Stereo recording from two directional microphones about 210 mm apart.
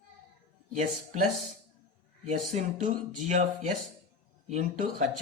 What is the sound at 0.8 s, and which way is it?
Speech, 35° right (ahead or behind).